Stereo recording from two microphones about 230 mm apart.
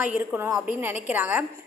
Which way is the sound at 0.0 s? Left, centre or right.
Centre.